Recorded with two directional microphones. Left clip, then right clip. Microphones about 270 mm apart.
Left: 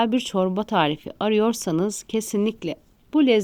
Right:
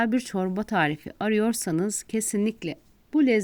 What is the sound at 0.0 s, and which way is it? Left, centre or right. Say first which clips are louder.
Speech: left 5 dB; right.